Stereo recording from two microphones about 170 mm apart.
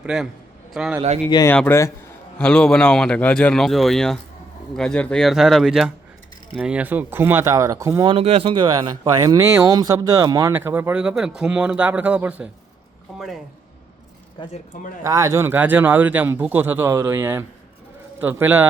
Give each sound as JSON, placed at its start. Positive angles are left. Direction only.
{"t": 0.0, "sound": "a man's voice", "side_deg": -5}
{"t": 1.3, "sound": "a man's voice", "side_deg": 20}
{"t": 8.0, "sound": "a man's voice", "side_deg": -35}
{"t": 14.7, "sound": "speech", "side_deg": 50}
{"t": 15.0, "sound": "a man's voice", "side_deg": -20}